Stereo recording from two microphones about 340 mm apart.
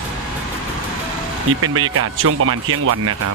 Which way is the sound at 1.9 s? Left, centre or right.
Right.